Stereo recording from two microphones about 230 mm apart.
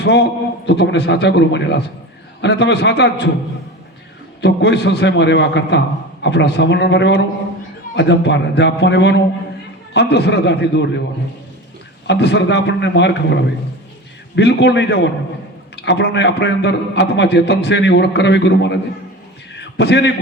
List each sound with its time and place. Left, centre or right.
0.0 s a man's voice: left
4.4 s a man's voice: left
12.0 s a man's voice: left
19.5 s a sound: left